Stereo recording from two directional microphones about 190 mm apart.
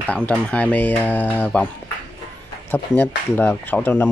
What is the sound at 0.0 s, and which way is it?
Speech, 5° left (ahead or behind).